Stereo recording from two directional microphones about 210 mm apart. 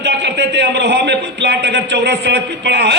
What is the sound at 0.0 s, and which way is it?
A man's voice, 55° right (ahead or behind).